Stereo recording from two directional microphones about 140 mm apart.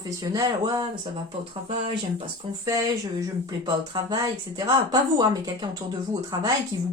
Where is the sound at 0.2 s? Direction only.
25° right (ahead or behind).